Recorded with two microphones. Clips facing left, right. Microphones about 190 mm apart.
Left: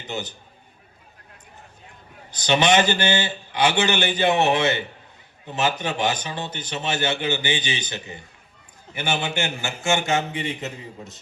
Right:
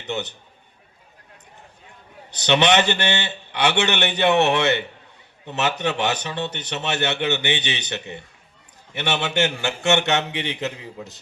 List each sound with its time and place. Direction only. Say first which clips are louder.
0.0 s a man's voice: right 3 dB; 70° right (ahead or behind)
2.3 s a man's voice: right 1 dB; 65° right (ahead or behind)
9.0 s a man's voice: right 3 dB; 80° right